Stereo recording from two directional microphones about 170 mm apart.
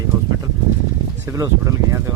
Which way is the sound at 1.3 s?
20° right (ahead or behind).